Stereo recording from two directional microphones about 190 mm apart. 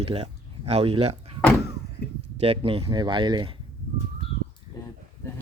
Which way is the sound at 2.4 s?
30° right (ahead or behind).